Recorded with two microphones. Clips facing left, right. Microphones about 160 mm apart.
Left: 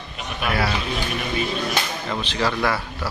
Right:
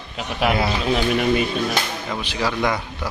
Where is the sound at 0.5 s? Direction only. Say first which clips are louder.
Right 2 dB; 20° right (ahead or behind).